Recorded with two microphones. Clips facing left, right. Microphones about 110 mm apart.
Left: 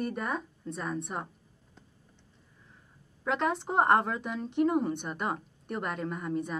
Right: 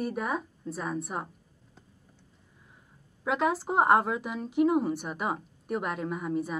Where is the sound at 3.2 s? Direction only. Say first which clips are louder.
Right 2 dB; 5° right (ahead or behind).